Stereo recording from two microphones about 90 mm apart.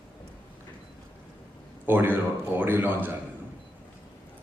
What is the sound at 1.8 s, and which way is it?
Speech, 20° right (ahead or behind).